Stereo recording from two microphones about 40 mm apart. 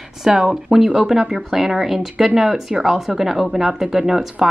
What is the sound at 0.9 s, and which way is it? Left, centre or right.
Speech, centre.